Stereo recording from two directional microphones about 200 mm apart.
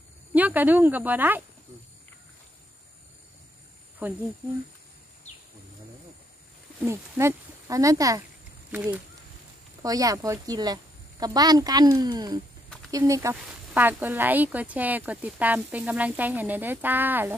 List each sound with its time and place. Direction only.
0.3 s speech: 10° right (ahead or behind)
4.0 s speech: 10° right (ahead or behind)
6.8 s speech: 15° right (ahead or behind)
9.8 s a woman's voice: 15° right (ahead or behind)